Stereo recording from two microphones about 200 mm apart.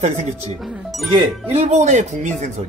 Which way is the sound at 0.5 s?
Centre (ahead or behind).